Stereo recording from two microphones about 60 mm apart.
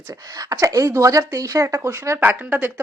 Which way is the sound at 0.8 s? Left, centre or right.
Right.